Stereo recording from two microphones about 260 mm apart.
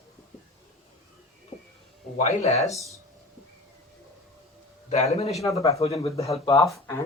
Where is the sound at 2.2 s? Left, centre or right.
Left.